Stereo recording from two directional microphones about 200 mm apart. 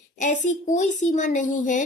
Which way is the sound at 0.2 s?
35° left (ahead or behind).